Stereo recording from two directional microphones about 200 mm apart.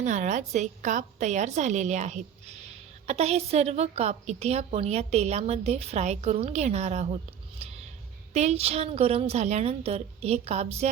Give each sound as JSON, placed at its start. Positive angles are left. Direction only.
{"t": 0.0, "sound": "a woman's voice", "side_deg": -35}
{"t": 7.6, "sound": "a sound", "side_deg": -30}
{"t": 8.3, "sound": "a woman's voice", "side_deg": -35}